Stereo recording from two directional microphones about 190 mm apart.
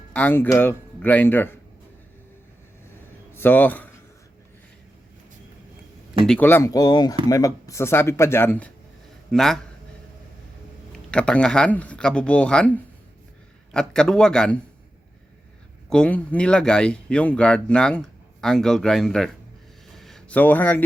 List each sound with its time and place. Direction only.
0.1 s speech: 10° left (ahead or behind)
3.3 s speech: 10° left (ahead or behind)
6.2 s speech: 5° left (ahead or behind)
11.1 s speech: 5° left (ahead or behind)
15.9 s speech: 5° left (ahead or behind)
20.0 s a sound: centre (ahead or behind)